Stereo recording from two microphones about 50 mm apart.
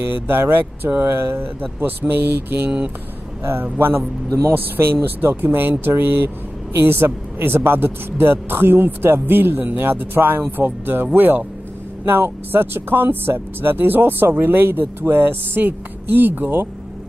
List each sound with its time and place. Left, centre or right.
0.0 s speech: right
1.0 s speech: right
1.8 s speech: right
3.7 s speech: right
12.0 s speech: right